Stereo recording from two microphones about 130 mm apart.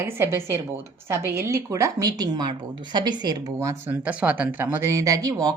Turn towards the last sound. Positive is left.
turn(degrees=-30)  # may be behind; listen again after turning